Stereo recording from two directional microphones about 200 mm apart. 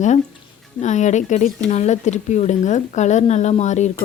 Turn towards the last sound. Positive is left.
turn(degrees=35)  # may be behind; listen again after turning